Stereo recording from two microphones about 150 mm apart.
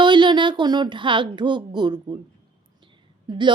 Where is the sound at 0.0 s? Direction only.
30° right (ahead or behind).